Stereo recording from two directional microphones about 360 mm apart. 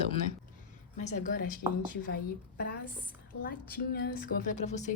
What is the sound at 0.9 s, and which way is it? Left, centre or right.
Speech, centre.